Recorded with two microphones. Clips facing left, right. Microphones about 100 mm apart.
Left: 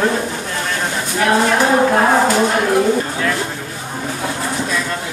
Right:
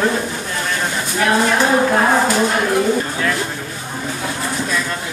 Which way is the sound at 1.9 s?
15° left (ahead or behind).